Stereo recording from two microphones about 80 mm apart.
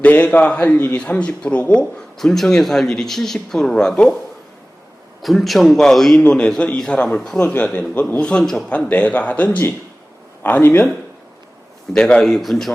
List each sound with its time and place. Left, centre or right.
0.0 s a man's voice: centre
5.2 s a man's voice: centre
6.1 s a man's voice: centre
11.9 s a man's voice: centre